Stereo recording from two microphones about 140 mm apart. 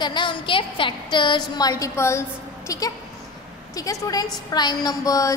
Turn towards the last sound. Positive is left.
turn(degrees=25)  # may be behind; listen again after turning